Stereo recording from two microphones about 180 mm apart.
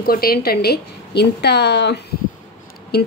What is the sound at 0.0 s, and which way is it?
A woman's voice, 55° left (ahead or behind).